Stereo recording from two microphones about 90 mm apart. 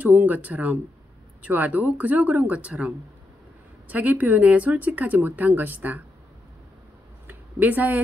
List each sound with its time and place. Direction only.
0.0 s speech: 20° right (ahead or behind)
3.9 s speech: 20° right (ahead or behind)
7.2 s a sound: 20° right (ahead or behind)